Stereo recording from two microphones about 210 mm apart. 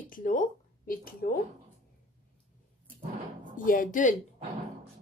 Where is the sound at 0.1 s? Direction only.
40° left (ahead or behind).